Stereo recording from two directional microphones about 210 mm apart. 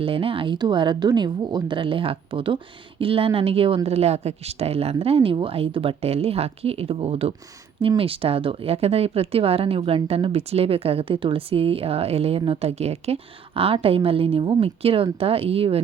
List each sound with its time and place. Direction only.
0.0 s a woman's voice: 25° right (ahead or behind)